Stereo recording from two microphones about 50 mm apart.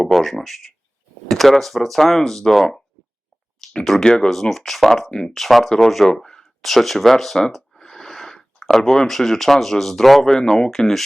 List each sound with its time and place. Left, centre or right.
0.0 s speech: centre
3.6 s a sound: centre
4.0 s speech: centre